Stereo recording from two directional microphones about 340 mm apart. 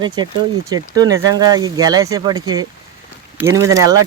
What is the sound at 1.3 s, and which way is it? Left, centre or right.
Speech, centre.